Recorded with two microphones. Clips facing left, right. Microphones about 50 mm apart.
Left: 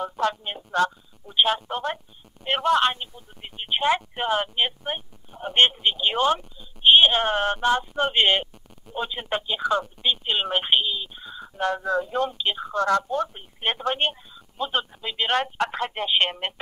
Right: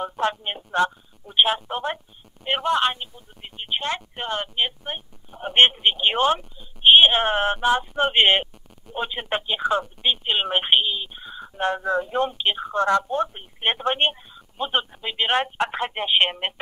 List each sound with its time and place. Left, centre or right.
0.2 s speech: right
1.3 s speech: centre
5.4 s speech: right